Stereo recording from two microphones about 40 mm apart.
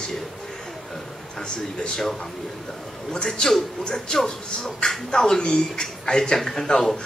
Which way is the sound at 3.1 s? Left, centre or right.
Centre.